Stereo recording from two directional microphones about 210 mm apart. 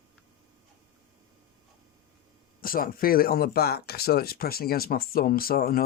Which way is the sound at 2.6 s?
45° left (ahead or behind).